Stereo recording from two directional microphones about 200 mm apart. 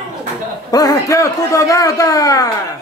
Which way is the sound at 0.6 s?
20° left (ahead or behind).